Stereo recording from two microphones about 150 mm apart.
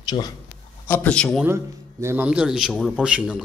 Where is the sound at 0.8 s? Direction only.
10° left (ahead or behind).